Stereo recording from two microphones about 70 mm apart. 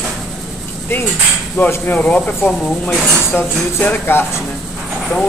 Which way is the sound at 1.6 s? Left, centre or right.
Left.